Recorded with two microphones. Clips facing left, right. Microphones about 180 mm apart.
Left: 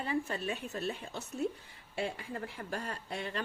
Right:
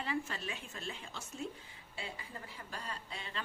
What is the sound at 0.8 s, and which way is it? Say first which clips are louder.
Speech: left 8 dB; 60° left (ahead or behind).